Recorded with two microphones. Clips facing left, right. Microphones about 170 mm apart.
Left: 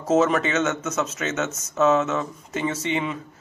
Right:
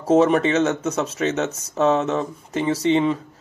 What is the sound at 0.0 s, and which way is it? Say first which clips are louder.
Speech: right 4 dB; 30° right (ahead or behind).